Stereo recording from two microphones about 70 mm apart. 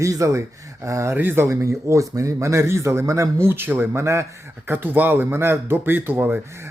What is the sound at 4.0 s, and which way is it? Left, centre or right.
Speech, right.